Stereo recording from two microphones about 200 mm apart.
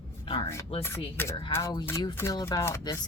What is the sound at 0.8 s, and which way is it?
Speech, 10° left (ahead or behind).